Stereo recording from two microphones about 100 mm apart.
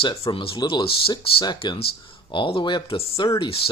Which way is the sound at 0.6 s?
45° left (ahead or behind).